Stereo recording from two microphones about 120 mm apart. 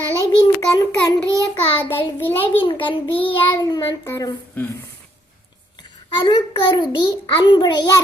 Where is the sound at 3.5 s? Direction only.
35° left (ahead or behind).